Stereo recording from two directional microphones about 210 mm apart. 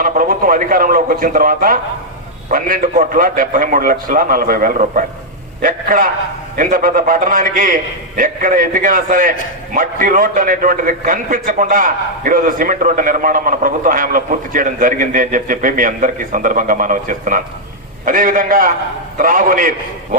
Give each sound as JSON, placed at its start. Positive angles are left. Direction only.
{"t": 0.0, "sound": "a man's voice", "side_deg": -40}